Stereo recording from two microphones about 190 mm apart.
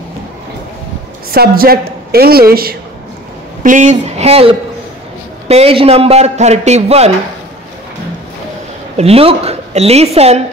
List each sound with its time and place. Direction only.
1.3 s a woman's voice: 50° right (ahead or behind)
3.6 s a man's voice: 40° right (ahead or behind)
8.9 s a woman's voice: 30° right (ahead or behind)